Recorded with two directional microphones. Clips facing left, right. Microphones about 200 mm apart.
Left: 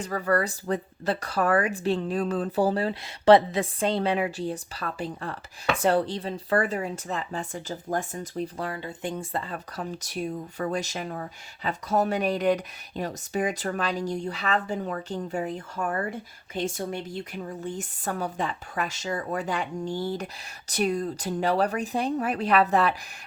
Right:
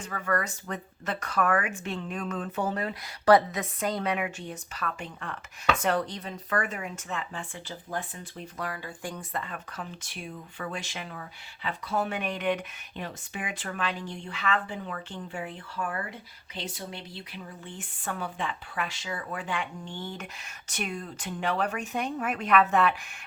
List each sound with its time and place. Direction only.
0.0 s speech: 35° left (ahead or behind)